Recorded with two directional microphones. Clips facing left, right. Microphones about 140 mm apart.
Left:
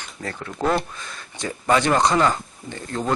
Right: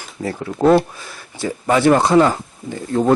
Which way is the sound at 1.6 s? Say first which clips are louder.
Right 5 dB; 25° right (ahead or behind).